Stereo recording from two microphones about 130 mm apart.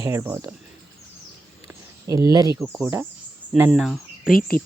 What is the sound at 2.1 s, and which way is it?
Speech, 25° right (ahead or behind).